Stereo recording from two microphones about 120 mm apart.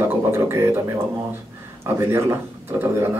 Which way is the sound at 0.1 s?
20° right (ahead or behind).